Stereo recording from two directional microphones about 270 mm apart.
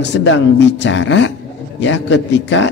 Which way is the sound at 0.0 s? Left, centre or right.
Left.